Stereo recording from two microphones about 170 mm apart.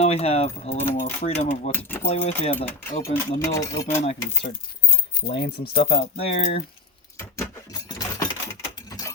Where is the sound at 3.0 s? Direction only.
15° left (ahead or behind).